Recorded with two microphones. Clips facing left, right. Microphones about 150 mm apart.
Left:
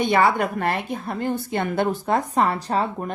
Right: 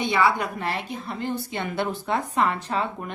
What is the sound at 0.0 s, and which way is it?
A woman's voice, 50° left (ahead or behind).